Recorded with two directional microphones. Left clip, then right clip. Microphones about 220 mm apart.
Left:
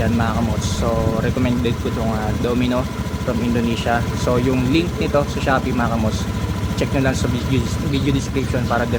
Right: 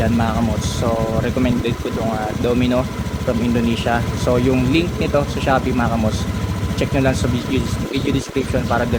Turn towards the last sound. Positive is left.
turn(degrees=-15)  # may be behind; listen again after turning